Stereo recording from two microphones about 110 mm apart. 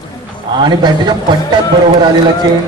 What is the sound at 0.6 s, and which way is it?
Speech, 40° right (ahead or behind).